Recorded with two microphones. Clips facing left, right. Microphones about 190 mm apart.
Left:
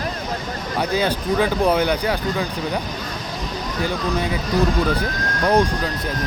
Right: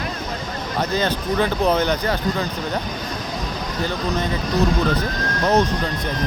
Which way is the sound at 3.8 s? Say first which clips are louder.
Left 1 dB; 10° left (ahead or behind).